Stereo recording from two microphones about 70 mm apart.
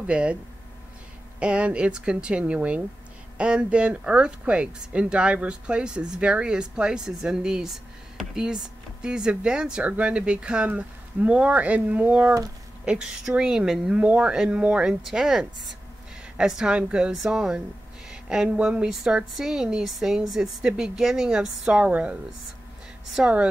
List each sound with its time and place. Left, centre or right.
0.0 s speech: centre
1.4 s speech: centre
17.1 s a woman's voice: centre
23.2 s speech: centre